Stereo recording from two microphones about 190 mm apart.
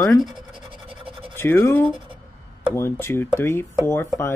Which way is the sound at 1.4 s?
10° left (ahead or behind).